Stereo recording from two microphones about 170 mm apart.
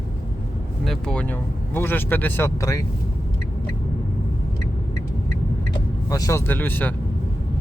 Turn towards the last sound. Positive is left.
turn(degrees=10)  # may be behind; listen again after turning